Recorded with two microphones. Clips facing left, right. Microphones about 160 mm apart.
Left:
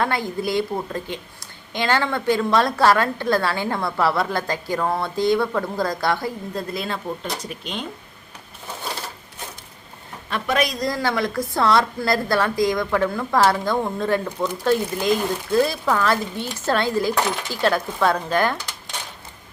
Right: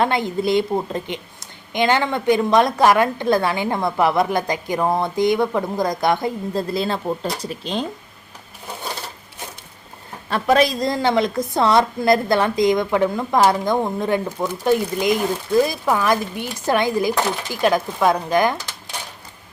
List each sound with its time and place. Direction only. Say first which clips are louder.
0.0 s a woman's voice: right 4 dB; 20° right (ahead or behind)
10.2 s a woman's voice: right 6 dB; 35° right (ahead or behind); by 18.5 s 15° right (ahead or behind)